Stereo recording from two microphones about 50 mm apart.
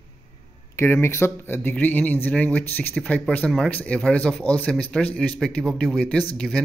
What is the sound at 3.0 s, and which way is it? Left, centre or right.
Speech, centre.